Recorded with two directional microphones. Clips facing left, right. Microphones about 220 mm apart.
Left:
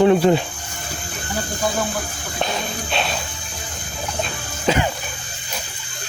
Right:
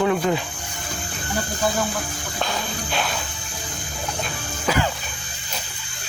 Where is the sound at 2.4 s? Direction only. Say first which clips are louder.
Left 3 dB; 20° left (ahead or behind).